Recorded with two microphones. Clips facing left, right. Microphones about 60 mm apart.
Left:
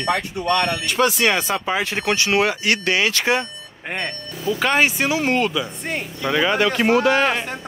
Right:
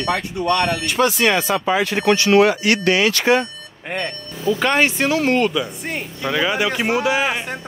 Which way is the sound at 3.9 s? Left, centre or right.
Left.